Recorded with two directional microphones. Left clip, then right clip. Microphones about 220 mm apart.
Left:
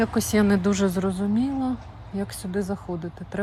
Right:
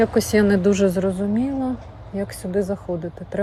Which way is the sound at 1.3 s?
25° left (ahead or behind).